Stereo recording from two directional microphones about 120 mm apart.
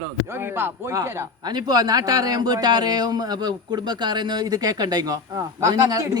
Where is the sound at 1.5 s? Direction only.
35° right (ahead or behind).